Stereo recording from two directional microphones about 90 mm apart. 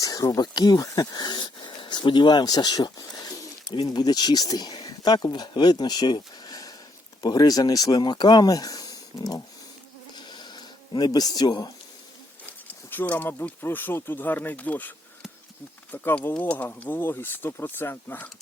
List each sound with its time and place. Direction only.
0.0 s speech: 45° left (ahead or behind)
10.2 s a sound: 55° left (ahead or behind)
12.9 s speech: 20° left (ahead or behind)